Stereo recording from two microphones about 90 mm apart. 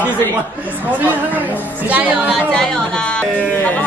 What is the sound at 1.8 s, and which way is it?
Speech, 15° right (ahead or behind).